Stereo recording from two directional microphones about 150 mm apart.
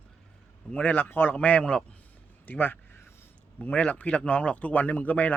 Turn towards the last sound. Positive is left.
turn(degrees=10)  # may be behind; listen again after turning